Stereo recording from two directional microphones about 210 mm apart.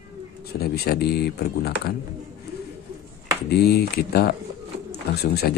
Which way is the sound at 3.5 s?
50° left (ahead or behind).